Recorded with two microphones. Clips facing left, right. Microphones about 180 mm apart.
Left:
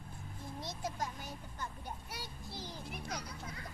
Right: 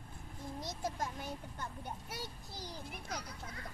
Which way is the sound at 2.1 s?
40° right (ahead or behind).